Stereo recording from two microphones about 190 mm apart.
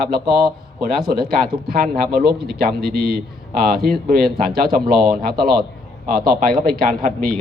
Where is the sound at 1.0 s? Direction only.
55° right (ahead or behind).